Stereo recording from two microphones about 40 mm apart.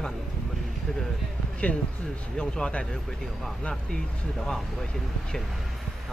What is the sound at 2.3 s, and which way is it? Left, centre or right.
Speech, centre.